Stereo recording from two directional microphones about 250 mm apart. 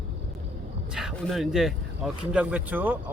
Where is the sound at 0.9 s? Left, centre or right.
Centre.